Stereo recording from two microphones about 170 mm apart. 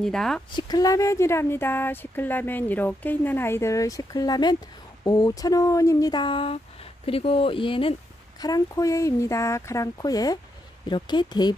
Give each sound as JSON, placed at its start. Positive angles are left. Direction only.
{"t": 0.0, "sound": "speech", "side_deg": 5}
{"t": 0.6, "sound": "speech", "side_deg": 25}